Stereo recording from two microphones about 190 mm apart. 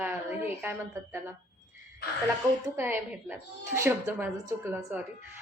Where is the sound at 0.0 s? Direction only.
10° right (ahead or behind).